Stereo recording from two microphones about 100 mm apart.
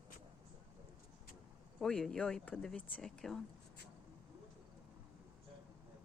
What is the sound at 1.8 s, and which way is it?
Speech, 5° left (ahead or behind).